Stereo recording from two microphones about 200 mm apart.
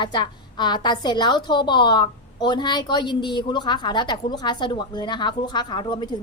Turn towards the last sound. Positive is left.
turn(degrees=25)  # may be behind; listen again after turning